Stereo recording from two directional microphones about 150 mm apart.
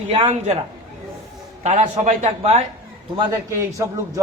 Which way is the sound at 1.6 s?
50° right (ahead or behind).